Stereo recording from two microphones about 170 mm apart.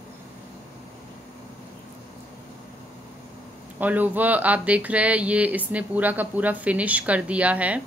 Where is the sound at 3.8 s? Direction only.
10° right (ahead or behind).